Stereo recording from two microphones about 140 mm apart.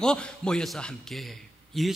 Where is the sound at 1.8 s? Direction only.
Centre (ahead or behind).